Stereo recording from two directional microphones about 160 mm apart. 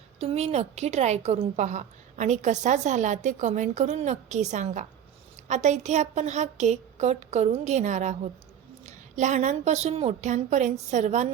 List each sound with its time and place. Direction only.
0.2 s a woman's voice: 40° right (ahead or behind)